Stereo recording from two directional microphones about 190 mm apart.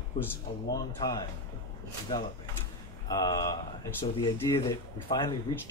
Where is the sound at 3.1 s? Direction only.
20° left (ahead or behind).